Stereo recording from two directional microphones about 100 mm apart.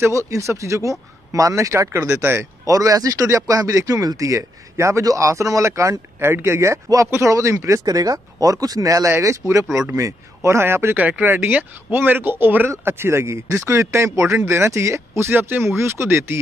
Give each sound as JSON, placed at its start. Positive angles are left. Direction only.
{"t": 0.0, "sound": "a man's voice", "side_deg": -30}